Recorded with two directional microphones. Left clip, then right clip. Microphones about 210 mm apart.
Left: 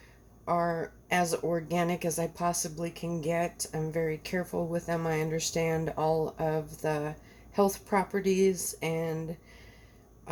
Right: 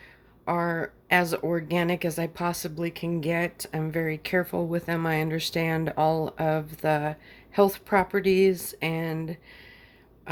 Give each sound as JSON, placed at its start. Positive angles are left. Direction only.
{"t": 0.4, "sound": "speech", "side_deg": -30}